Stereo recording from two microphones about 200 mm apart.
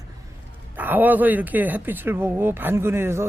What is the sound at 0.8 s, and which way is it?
Speech, 10° right (ahead or behind).